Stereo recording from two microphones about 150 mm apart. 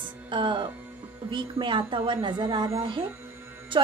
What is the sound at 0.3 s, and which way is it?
A woman's voice, 30° right (ahead or behind).